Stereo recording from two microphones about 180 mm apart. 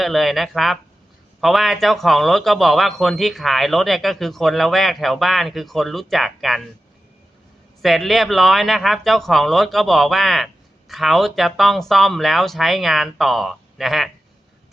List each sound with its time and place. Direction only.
0.0 s speech: centre (ahead or behind)
7.8 s speech: centre (ahead or behind)